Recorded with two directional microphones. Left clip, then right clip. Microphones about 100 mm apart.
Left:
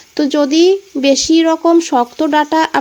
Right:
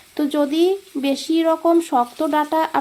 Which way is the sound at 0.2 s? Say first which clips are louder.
Left 7 dB; 35° left (ahead or behind).